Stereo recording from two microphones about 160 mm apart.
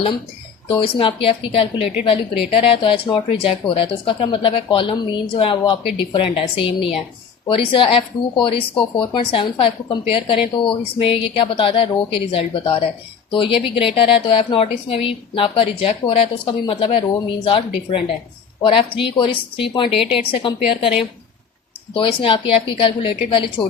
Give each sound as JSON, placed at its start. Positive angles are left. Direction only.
{"t": 0.7, "sound": "speech", "side_deg": 35}
{"t": 20.0, "sound": "a woman's voice", "side_deg": -5}
{"t": 20.3, "sound": "speech", "side_deg": 35}
{"t": 21.9, "sound": "speech", "side_deg": 35}